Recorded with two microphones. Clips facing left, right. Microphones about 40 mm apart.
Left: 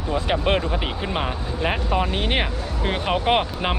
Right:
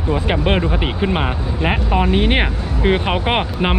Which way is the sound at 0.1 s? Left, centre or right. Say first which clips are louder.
Right 3 dB; centre.